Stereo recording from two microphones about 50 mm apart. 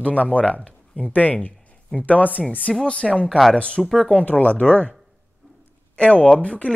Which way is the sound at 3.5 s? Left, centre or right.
Left.